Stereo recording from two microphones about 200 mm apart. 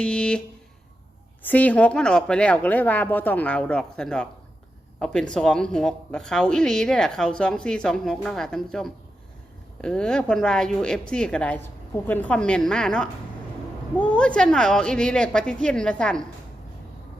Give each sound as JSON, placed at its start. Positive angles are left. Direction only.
{"t": 0.0, "sound": "speech", "side_deg": 5}